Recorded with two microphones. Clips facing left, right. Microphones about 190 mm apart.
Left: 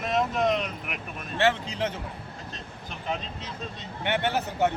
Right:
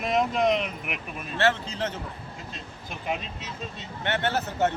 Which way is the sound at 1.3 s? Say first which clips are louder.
Even; 15° left (ahead or behind).